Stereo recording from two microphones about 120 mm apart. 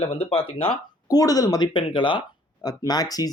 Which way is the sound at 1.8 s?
45° left (ahead or behind).